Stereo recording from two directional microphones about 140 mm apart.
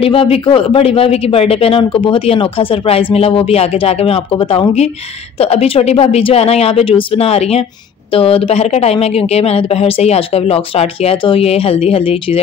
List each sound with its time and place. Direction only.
0.0 s a man's voice: 40° left (ahead or behind)